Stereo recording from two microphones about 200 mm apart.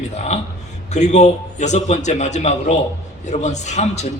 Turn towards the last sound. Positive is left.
turn(degrees=35)  # may be behind; listen again after turning